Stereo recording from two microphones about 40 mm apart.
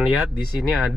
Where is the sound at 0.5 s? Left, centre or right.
Centre.